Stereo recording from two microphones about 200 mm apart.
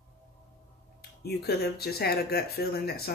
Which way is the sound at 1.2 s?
50° left (ahead or behind).